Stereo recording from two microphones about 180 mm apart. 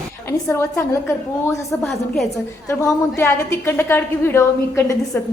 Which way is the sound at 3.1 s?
15° left (ahead or behind).